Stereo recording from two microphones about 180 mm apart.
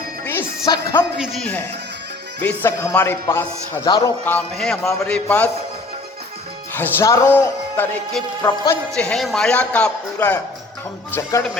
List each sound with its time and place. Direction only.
0.7 s speech: 25° left (ahead or behind)
1.2 s a man's voice: centre (ahead or behind); by 4.0 s 20° left (ahead or behind)
4.3 s a man's voice: 5° left (ahead or behind)
6.7 s speech: 20° left (ahead or behind)
9.0 s speech: 5° left (ahead or behind)